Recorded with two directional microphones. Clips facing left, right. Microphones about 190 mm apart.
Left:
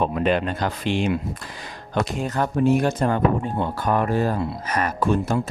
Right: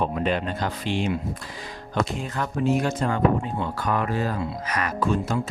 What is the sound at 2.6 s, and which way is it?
Speech, 55° left (ahead or behind).